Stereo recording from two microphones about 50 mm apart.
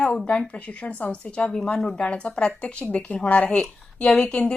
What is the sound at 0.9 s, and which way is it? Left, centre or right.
Speech, left.